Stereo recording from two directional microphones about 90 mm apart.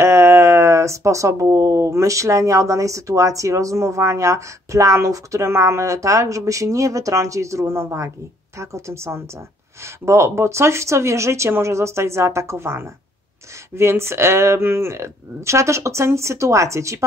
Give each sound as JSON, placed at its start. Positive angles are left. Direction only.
{"t": 0.0, "sound": "speech", "side_deg": -30}